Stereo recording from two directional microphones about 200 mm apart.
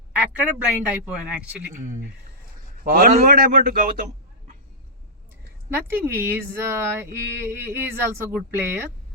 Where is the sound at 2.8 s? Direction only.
45° right (ahead or behind).